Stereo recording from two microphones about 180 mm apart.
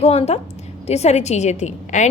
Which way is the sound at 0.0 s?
35° left (ahead or behind).